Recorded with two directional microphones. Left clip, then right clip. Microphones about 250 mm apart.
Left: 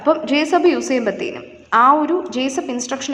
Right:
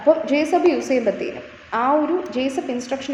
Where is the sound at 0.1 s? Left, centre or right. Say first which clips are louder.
Left 1 dB; centre.